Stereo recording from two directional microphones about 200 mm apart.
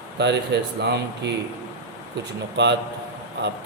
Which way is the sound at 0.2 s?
55° right (ahead or behind).